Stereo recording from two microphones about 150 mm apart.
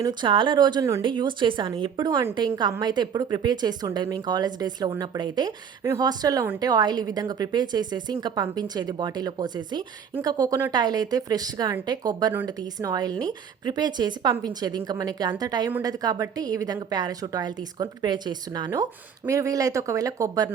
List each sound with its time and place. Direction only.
0.0 s speech: 30° right (ahead or behind)